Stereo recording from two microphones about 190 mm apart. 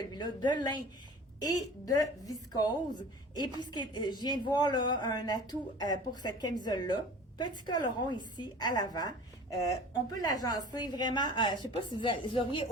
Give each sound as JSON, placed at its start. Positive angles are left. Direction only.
{"t": 0.1, "sound": "a woman's voice", "side_deg": 20}